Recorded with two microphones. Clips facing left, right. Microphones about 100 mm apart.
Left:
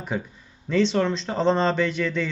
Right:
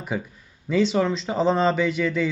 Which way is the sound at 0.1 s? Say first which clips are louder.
Right 1 dB; 5° right (ahead or behind).